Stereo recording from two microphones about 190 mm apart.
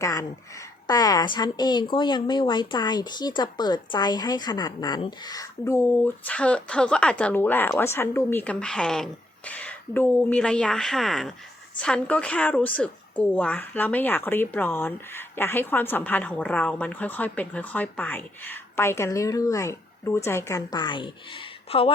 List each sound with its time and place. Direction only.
0.0 s speech: 15° left (ahead or behind)